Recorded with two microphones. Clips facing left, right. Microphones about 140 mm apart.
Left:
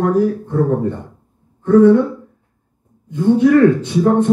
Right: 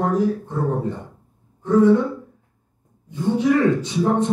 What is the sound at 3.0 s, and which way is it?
Speech, 60° left (ahead or behind).